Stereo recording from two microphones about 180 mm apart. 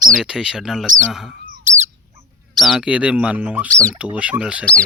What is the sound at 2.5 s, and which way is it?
Speech, centre (ahead or behind).